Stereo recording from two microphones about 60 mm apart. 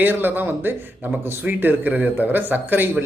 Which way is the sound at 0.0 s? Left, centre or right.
Right.